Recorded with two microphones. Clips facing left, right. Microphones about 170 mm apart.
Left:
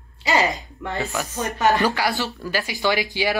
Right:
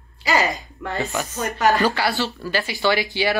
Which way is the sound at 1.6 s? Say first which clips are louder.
Right 1 dB; 20° left (ahead or behind).